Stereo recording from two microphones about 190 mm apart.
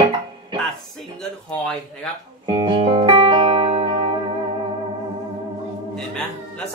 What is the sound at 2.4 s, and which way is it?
Music, 25° right (ahead or behind).